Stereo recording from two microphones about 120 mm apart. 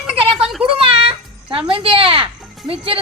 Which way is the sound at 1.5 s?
45° right (ahead or behind).